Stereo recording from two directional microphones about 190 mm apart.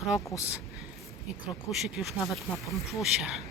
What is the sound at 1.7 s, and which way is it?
Speech, centre (ahead or behind).